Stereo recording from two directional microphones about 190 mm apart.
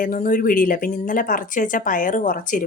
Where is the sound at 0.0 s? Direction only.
45° left (ahead or behind).